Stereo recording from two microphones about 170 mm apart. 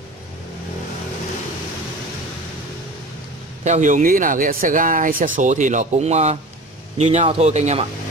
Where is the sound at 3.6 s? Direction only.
45° right (ahead or behind).